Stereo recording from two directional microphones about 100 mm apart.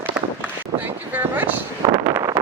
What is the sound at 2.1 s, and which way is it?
Vehicle, 35° right (ahead or behind).